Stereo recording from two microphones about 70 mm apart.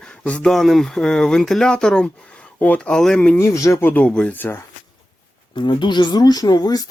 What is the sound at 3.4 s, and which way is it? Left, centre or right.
Speech, left.